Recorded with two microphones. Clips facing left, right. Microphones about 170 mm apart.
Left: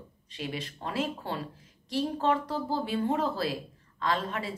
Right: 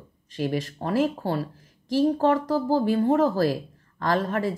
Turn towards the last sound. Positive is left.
turn(degrees=-45)  # may be behind; listen again after turning